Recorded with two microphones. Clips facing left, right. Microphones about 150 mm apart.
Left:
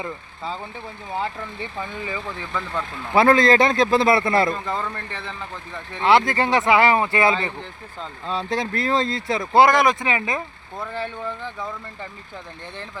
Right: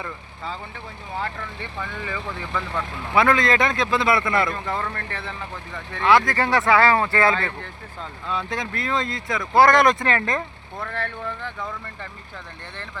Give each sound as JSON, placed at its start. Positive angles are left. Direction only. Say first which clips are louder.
{"t": 1.8, "sound": "speech", "louder": "even", "side_deg": 15}
{"t": 2.5, "sound": "speech", "louder": "even", "side_deg": 0}
{"t": 3.2, "sound": "a man's voice", "louder": "left 4 dB", "side_deg": 35}
{"t": 6.0, "sound": "speech", "louder": "left 1 dB", "side_deg": 25}
{"t": 8.3, "sound": "a man's voice", "louder": "left 3 dB", "side_deg": 30}
{"t": 9.6, "sound": "speech", "louder": "right 1 dB", "side_deg": 0}